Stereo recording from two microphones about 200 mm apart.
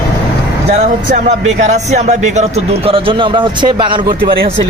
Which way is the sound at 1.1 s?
35° right (ahead or behind).